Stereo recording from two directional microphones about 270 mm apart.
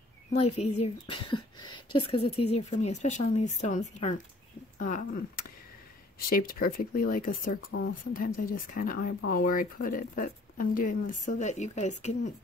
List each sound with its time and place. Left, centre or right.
0.6 s speech: left
6.1 s speech: left